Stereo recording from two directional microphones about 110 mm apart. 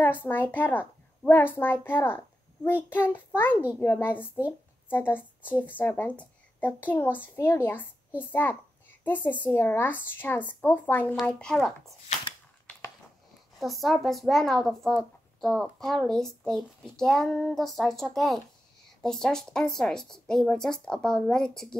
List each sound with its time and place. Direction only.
0.0 s a child's voice: 20° left (ahead or behind)
13.6 s a child's voice: centre (ahead or behind)